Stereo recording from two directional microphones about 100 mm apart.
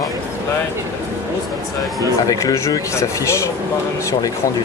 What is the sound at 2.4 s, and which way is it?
Speech, 30° left (ahead or behind).